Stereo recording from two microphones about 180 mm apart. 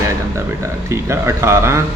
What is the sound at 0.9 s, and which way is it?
Speech, 15° right (ahead or behind).